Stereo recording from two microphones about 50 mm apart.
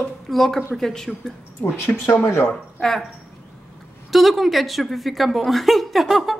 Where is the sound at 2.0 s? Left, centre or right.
Left.